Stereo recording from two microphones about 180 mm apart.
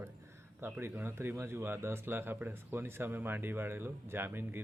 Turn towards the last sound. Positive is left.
turn(degrees=-10)  # may be behind; listen again after turning